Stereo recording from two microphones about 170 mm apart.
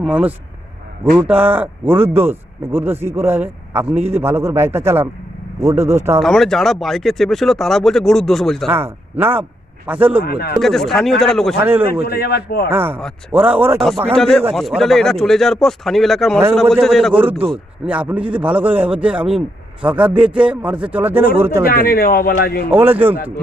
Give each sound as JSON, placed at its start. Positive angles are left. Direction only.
{"t": 0.0, "sound": "speech", "side_deg": -5}
{"t": 6.2, "sound": "speech", "side_deg": 0}
{"t": 8.7, "sound": "speech", "side_deg": -10}
{"t": 10.2, "sound": "speech", "side_deg": 65}
{"t": 10.6, "sound": "speech", "side_deg": 0}
{"t": 11.6, "sound": "speech", "side_deg": -10}
{"t": 12.0, "sound": "speech", "side_deg": 65}
{"t": 12.7, "sound": "speech", "side_deg": -10}
{"t": 14.2, "sound": "speech", "side_deg": 0}
{"t": 17.2, "sound": "a man's voice", "side_deg": -35}
{"t": 17.5, "sound": "speech", "side_deg": -5}
{"t": 21.7, "sound": "speech", "side_deg": 65}
{"t": 22.7, "sound": "speech", "side_deg": -10}